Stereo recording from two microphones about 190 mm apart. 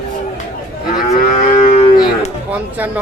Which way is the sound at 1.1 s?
35° left (ahead or behind).